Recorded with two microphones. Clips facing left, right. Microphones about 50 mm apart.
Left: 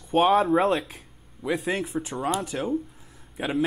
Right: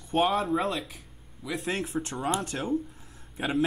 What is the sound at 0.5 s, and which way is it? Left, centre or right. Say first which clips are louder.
Speech: left 6 dB; left.